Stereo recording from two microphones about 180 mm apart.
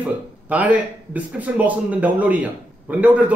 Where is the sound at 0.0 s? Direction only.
10° right (ahead or behind).